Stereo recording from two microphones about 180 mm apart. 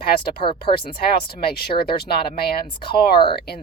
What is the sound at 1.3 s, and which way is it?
Speech, 60° left (ahead or behind).